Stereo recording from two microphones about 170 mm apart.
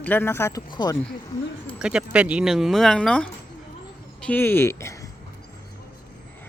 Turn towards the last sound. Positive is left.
turn(degrees=15)  # may be behind; listen again after turning